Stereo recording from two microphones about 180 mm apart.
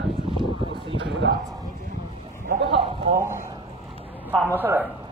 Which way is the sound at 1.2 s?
90° right.